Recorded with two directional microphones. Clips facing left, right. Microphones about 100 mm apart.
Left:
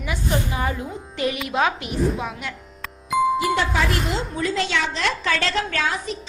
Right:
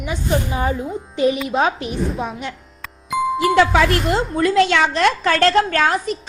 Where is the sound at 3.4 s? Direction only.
80° right.